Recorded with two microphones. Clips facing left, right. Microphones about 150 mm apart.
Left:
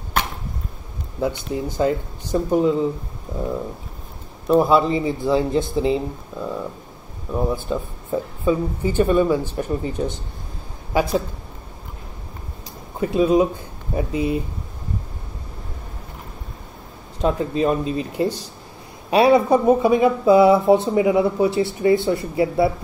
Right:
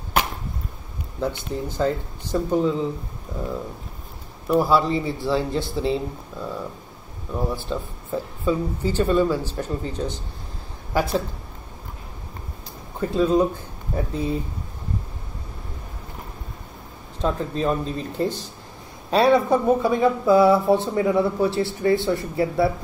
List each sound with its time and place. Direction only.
1.2 s speech: 10° left (ahead or behind)
4.5 s a man's voice: 20° left (ahead or behind)
7.7 s a woman's voice: 15° left (ahead or behind)
13.0 s speech: 15° left (ahead or behind)
17.2 s speech: 15° left (ahead or behind)